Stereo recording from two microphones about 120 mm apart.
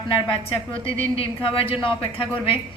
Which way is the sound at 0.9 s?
50° left (ahead or behind).